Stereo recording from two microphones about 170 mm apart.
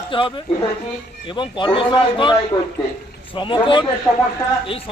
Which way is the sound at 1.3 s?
30° left (ahead or behind).